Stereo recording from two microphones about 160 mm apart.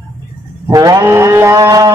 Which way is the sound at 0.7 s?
20° right (ahead or behind).